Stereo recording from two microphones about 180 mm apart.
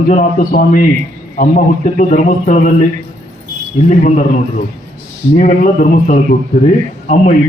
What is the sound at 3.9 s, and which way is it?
Speech, 40° left (ahead or behind).